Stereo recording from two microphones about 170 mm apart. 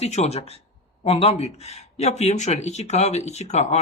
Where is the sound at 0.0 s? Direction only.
40° left (ahead or behind).